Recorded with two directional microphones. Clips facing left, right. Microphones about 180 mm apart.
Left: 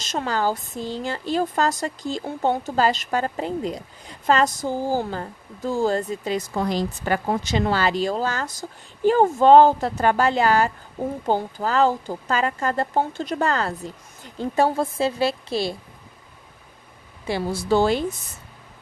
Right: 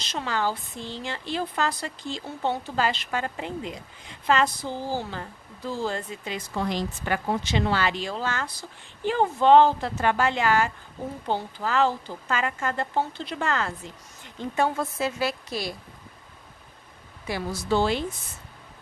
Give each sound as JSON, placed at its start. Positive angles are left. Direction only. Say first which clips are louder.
{"t": 0.0, "sound": "a woman's voice", "louder": "left 4 dB", "side_deg": 45}
{"t": 17.3, "sound": "speech", "louder": "left 5 dB", "side_deg": 30}
{"t": 17.7, "sound": "speech", "louder": "left 4 dB", "side_deg": 45}